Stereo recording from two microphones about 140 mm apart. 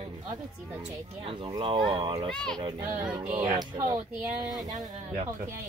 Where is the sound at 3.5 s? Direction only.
25° right (ahead or behind).